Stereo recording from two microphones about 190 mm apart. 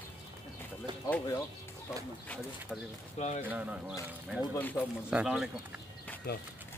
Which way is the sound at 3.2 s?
40° left (ahead or behind).